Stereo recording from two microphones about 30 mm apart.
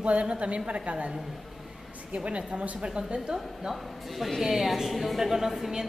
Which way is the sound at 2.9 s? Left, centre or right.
Right.